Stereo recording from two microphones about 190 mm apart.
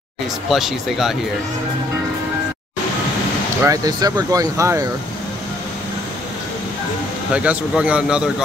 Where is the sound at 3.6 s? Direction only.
20° right (ahead or behind).